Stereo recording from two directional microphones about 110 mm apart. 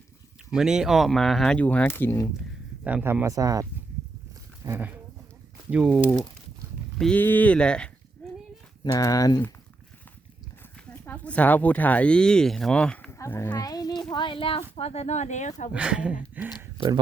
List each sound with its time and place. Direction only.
0.5 s speech: 5° right (ahead or behind)
1.5 s speech: 15° left (ahead or behind)
2.8 s speech: 15° right (ahead or behind)
3.3 s speech: 30° right (ahead or behind)
4.6 s speech: 20° right (ahead or behind)
5.7 s speech: 5° right (ahead or behind)
7.0 s speech: 15° left (ahead or behind)
8.8 s speech: 30° left (ahead or behind)
10.9 s speech: 15° left (ahead or behind)
13.1 s a sound: 25° left (ahead or behind)
13.6 s a sound: 35° left (ahead or behind)
14.1 s speech: 45° left (ahead or behind); by 15.7 s 90° left
15.7 s speech: 10° right (ahead or behind)
16.7 s speech: 40° right (ahead or behind)